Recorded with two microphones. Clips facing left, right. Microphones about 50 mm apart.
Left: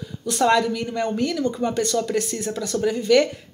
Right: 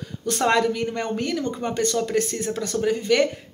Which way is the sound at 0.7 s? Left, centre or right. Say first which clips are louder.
Left 1 dB; right.